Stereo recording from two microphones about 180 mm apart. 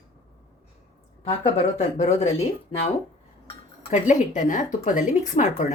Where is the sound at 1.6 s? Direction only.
40° left (ahead or behind).